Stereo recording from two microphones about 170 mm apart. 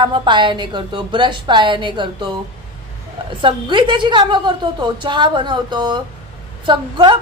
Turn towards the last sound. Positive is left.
turn(degrees=-30)  # may be behind; listen again after turning